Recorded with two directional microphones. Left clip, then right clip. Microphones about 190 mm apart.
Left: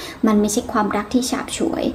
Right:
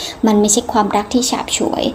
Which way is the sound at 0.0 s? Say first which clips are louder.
Right 4 dB; 20° right (ahead or behind).